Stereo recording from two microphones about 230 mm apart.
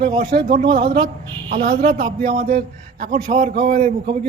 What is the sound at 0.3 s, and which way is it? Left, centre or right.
Speech, right.